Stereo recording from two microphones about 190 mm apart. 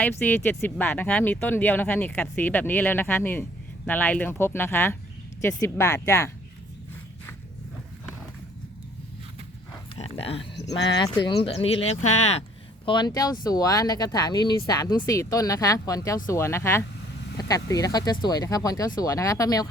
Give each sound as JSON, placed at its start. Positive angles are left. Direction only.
{"t": 0.0, "sound": "speech", "side_deg": 10}
{"t": 9.9, "sound": "speech", "side_deg": 30}